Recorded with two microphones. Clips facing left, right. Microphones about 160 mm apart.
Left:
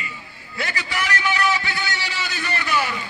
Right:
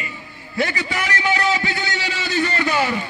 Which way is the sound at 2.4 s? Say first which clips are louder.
Right 4 dB; 45° right (ahead or behind).